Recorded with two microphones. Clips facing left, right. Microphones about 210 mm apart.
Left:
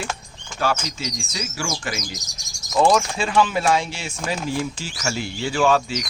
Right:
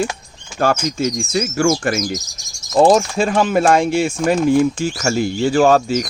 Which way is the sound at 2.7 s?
40° right (ahead or behind).